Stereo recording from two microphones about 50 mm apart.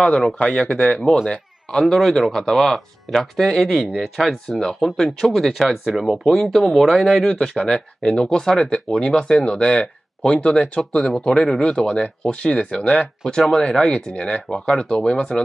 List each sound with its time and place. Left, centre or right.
0.4 s speech: left
0.7 s speech: centre
4.5 s speech: centre
7.6 s speech: centre
12.8 s speech: left
13.3 s speech: centre